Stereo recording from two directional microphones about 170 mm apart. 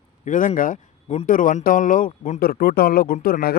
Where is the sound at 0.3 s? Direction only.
50° left (ahead or behind).